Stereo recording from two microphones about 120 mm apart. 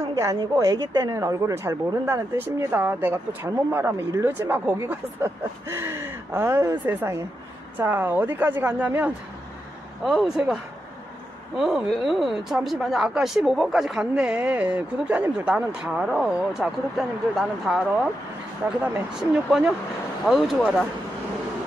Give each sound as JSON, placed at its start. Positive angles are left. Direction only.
{"t": 0.1, "sound": "a woman's voice", "side_deg": -25}